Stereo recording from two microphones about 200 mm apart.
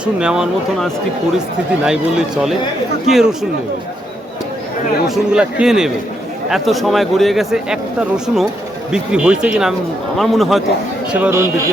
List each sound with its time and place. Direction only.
0.0 s speech: 5° right (ahead or behind)
5.0 s speech: 5° right (ahead or behind)
11.1 s speech: 10° right (ahead or behind)